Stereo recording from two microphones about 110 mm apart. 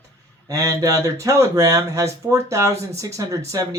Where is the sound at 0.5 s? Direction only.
30° right (ahead or behind).